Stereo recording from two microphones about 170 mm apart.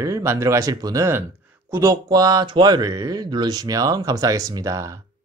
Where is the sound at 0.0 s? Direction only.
15° right (ahead or behind).